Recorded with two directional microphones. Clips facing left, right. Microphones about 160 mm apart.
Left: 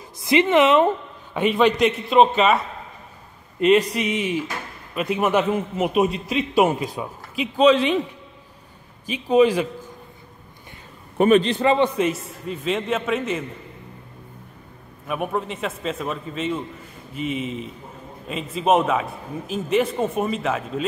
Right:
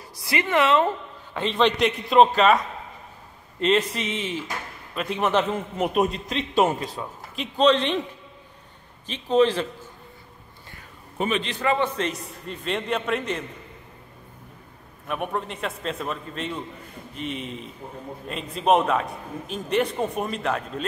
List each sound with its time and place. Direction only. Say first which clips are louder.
0.2 s a man's voice: left 6 dB; 20° left (ahead or behind); by 8.0 s 5° left (ahead or behind)
9.0 s a man's voice: left 3 dB; 10° left (ahead or behind)
11.1 s a man's voice: left 10 dB; 45° left (ahead or behind)
11.5 s a man's voice: left 5 dB; 25° left (ahead or behind)
12.0 s a man's voice: left 6 dB; 5° left (ahead or behind)
15.0 s a man's voice: left 3 dB; 5° left (ahead or behind)